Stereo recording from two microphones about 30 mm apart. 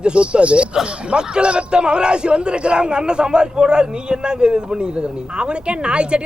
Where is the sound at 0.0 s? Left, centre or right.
Right.